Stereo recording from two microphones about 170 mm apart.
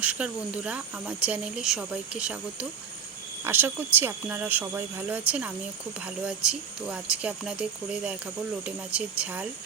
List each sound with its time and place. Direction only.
0.0 s speech: 5° right (ahead or behind)